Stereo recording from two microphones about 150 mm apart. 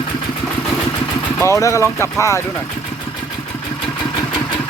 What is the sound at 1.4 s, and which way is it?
Speech, 20° left (ahead or behind).